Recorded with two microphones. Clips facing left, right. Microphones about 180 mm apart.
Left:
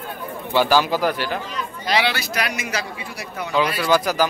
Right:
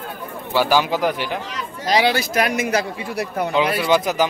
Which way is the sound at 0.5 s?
15° right (ahead or behind).